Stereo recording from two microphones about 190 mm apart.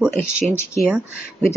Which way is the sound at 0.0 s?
5° right (ahead or behind).